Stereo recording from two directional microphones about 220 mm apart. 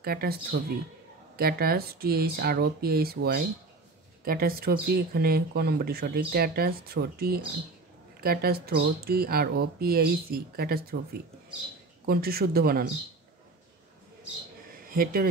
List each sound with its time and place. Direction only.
0.0 s speech: 45° right (ahead or behind)
12.1 s speech: 45° right (ahead or behind)
14.9 s speech: 40° right (ahead or behind)